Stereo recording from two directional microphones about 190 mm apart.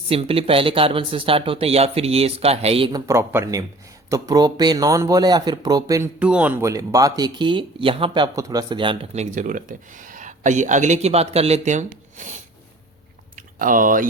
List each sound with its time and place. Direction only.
0.1 s speech: 30° right (ahead or behind)
3.1 s speech: 15° right (ahead or behind)
6.1 s speech: 5° right (ahead or behind); by 14.1 s 45° right (ahead or behind)